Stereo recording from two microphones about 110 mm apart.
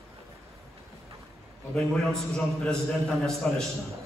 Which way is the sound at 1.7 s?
5° left (ahead or behind).